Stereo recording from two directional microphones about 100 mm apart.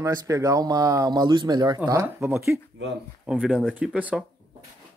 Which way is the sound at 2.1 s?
20° right (ahead or behind).